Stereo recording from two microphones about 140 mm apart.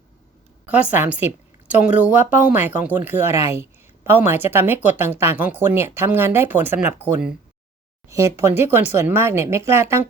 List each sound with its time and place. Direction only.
0.6 s a woman's voice: 10° right (ahead or behind)